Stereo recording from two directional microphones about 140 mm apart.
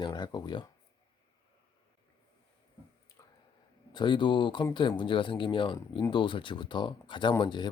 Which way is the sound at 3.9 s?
35° left (ahead or behind).